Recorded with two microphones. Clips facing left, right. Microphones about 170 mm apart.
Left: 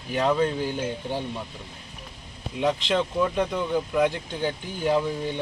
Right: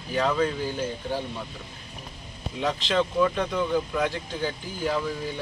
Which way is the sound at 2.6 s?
10° left (ahead or behind).